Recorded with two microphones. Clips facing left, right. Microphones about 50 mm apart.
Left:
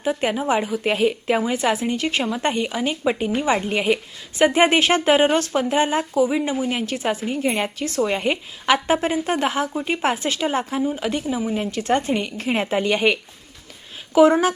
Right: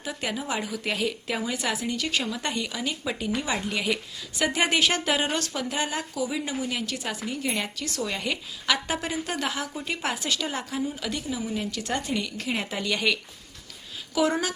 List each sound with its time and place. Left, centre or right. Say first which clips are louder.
0.0 s a woman's voice: left 9 dB; left